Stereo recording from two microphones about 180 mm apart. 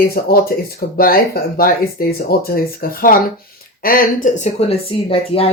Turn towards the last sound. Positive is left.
turn(degrees=30)  # may be behind; listen again after turning